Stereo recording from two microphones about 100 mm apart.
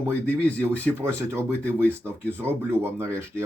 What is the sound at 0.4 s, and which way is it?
Speech, 15° left (ahead or behind).